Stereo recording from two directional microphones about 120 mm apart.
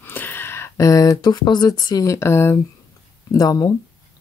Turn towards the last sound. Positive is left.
turn(degrees=30)  # may be behind; listen again after turning